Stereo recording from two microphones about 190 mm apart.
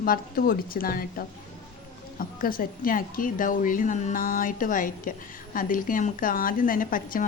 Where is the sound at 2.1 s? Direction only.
50° left (ahead or behind).